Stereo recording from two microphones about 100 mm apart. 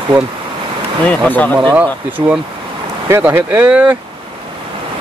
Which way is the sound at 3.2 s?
20° right (ahead or behind).